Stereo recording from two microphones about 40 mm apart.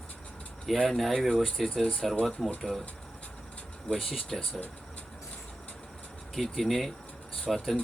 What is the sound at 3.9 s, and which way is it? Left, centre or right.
Speech, centre.